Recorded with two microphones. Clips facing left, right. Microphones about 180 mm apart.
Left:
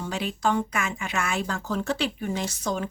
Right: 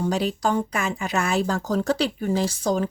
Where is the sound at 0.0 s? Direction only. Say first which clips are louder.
Right 4 dB; 40° right (ahead or behind).